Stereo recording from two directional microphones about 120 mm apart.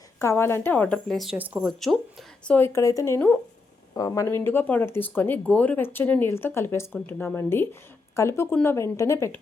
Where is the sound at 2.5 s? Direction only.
20° left (ahead or behind).